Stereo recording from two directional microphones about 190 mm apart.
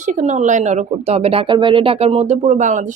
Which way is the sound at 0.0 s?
40° right (ahead or behind).